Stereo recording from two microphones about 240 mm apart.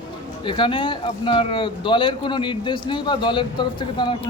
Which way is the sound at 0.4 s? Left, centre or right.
Left.